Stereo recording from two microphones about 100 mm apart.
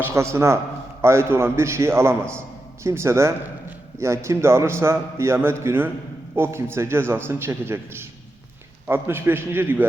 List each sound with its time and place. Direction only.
0.0 s a man's voice: 25° right (ahead or behind)